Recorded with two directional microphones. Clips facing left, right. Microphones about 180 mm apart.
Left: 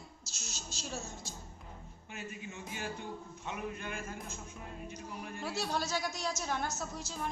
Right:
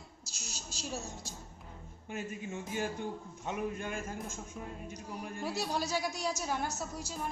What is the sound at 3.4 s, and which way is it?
A man's voice, 40° right (ahead or behind).